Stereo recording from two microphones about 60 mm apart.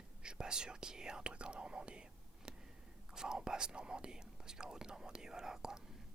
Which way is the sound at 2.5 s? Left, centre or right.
Centre.